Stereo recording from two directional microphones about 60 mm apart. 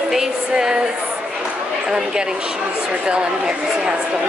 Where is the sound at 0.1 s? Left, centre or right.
Centre.